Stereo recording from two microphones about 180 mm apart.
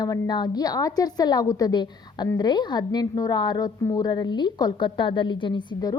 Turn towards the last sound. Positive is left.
turn(degrees=25)  # may be behind; listen again after turning